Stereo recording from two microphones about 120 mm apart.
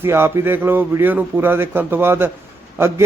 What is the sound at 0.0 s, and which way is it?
Speech, 20° right (ahead or behind).